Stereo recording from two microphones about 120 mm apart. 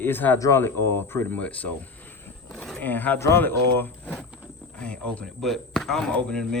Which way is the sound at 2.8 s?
15° left (ahead or behind).